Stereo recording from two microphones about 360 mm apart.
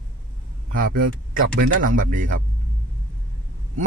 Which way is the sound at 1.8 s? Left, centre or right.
Right.